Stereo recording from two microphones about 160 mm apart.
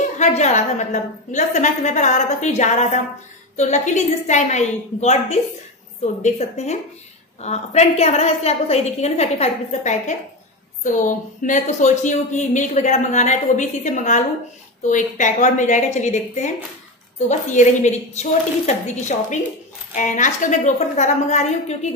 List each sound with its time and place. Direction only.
0.2 s a woman's voice: 45° left (ahead or behind)